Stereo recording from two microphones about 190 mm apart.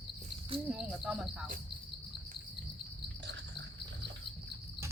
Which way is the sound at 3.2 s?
70° right (ahead or behind).